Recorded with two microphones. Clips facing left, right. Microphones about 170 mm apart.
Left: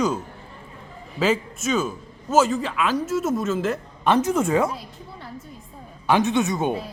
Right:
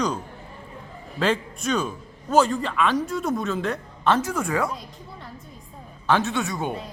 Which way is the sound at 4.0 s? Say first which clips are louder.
Left 3 dB; 15° left (ahead or behind).